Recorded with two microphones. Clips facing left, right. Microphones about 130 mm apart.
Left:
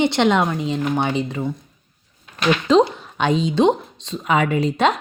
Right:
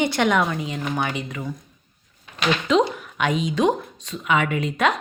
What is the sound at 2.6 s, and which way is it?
Speech, 30° left (ahead or behind).